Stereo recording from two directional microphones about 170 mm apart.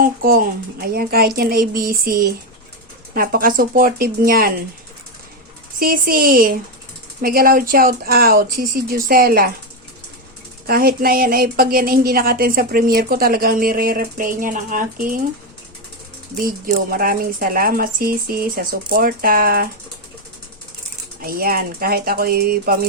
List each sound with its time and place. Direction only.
0.0 s speech: 60° right (ahead or behind)
5.8 s speech: 60° right (ahead or behind)
10.7 s speech: 60° right (ahead or behind)
16.9 s speech: 60° right (ahead or behind)
21.2 s speech: 60° right (ahead or behind)